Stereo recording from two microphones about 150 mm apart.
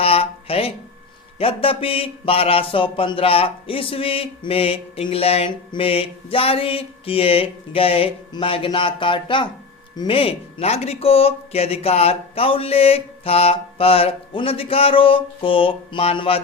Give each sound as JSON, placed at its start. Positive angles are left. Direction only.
{"t": 0.0, "sound": "speech", "side_deg": 40}